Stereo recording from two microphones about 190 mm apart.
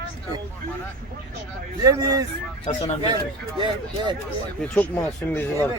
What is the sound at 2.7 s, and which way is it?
Speech, 35° left (ahead or behind).